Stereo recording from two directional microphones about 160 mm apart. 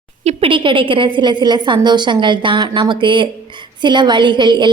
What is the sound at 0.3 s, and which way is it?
A woman's voice, 35° right (ahead or behind).